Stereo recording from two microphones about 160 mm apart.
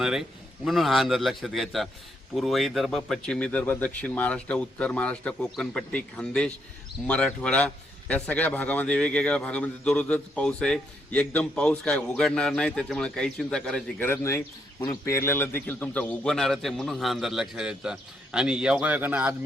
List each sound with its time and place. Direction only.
0.0 s a man's voice: 5° right (ahead or behind)